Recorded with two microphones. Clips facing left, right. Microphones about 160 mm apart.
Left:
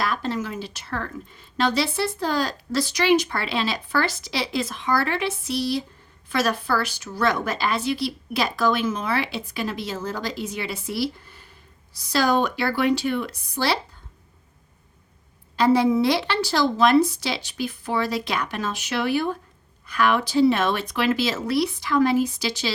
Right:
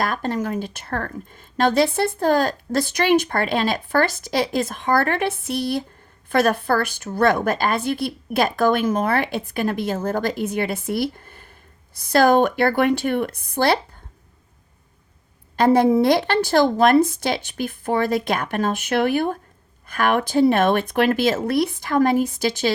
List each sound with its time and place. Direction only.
0.0 s a woman's voice: 50° right (ahead or behind)
15.5 s a woman's voice: 50° right (ahead or behind)